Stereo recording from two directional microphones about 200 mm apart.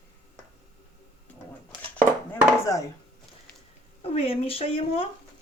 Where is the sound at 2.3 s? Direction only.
15° left (ahead or behind).